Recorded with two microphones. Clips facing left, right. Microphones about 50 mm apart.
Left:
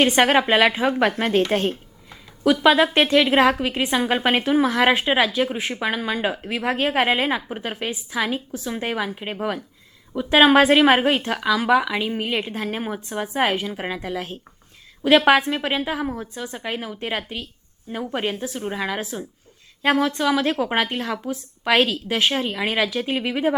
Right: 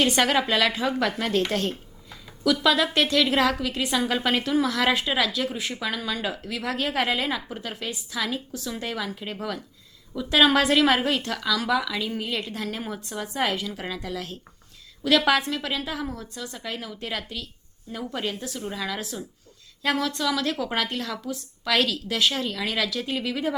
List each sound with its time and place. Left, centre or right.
0.0 s a woman's voice: left